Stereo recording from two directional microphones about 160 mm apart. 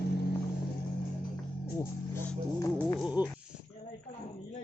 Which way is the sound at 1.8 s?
15° left (ahead or behind).